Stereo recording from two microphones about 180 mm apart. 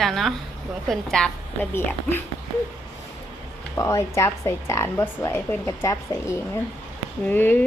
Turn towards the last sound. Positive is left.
turn(degrees=10)  # may be behind; listen again after turning